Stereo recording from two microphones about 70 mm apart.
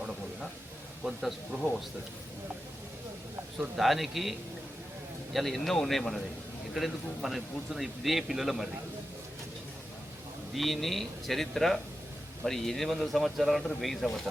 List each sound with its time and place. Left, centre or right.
1.0 s speech: centre
3.8 s speech: centre
10.5 s speech: centre